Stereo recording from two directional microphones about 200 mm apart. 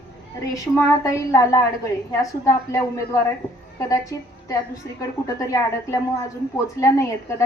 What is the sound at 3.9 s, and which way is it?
A woman's voice, 15° left (ahead or behind).